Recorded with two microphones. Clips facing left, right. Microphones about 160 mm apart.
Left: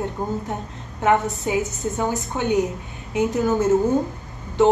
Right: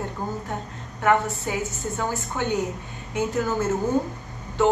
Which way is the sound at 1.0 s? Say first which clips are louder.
Left 2 dB; 20° left (ahead or behind).